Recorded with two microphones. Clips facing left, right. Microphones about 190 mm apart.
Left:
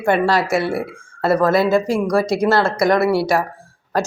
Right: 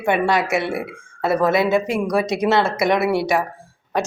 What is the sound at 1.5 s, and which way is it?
Speech, 20° right (ahead or behind).